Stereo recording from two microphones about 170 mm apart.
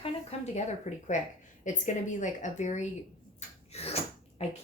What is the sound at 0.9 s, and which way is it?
A woman's voice, 40° left (ahead or behind).